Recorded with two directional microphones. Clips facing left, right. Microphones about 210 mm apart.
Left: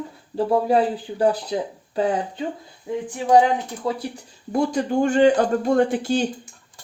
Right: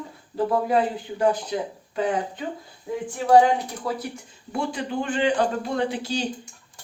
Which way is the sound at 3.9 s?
40° left (ahead or behind).